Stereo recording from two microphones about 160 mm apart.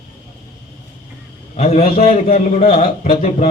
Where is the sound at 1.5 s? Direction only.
40° left (ahead or behind).